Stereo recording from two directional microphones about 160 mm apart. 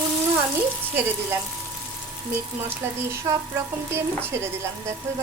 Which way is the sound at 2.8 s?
15° right (ahead or behind).